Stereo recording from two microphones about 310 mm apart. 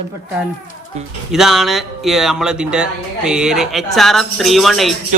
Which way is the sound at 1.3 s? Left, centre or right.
Centre.